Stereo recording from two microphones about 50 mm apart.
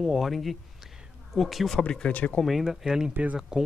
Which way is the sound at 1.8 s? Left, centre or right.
Centre.